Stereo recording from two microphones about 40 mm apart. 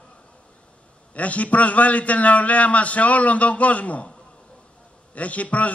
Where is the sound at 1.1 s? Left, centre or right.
Left.